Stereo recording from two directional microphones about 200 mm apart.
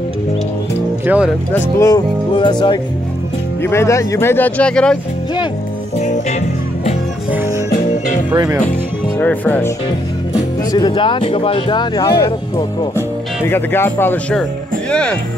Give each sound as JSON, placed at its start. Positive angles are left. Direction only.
{"t": 1.0, "sound": "speech", "side_deg": -5}
{"t": 1.5, "sound": "speech", "side_deg": 15}
{"t": 9.2, "sound": "speech", "side_deg": 10}
{"t": 10.7, "sound": "speech", "side_deg": 20}